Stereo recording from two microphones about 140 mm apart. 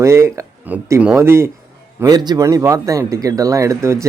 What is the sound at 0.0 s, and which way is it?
Speech, 20° right (ahead or behind).